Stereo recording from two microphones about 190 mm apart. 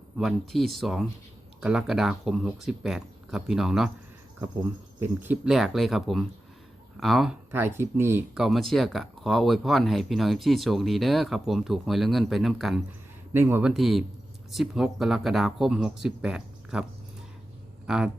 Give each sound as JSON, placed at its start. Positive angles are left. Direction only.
{"t": 0.2, "sound": "speech", "side_deg": 0}
{"t": 4.9, "sound": "speech", "side_deg": -10}
{"t": 7.5, "sound": "speech", "side_deg": -10}
{"t": 8.4, "sound": "speech", "side_deg": 0}
{"t": 13.3, "sound": "speech", "side_deg": -10}
{"t": 17.8, "sound": "speech", "side_deg": -5}